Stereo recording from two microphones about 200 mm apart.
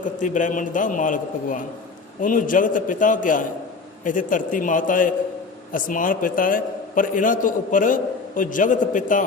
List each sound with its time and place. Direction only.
0.2 s a man's voice: 40° left (ahead or behind)